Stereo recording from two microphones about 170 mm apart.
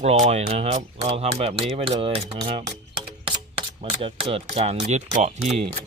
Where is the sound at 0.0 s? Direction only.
40° right (ahead or behind).